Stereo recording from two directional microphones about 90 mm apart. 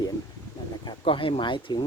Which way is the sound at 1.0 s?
75° left (ahead or behind).